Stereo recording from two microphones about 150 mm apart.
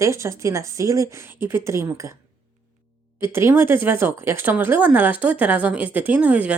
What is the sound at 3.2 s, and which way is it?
A woman's voice, 15° right (ahead or behind).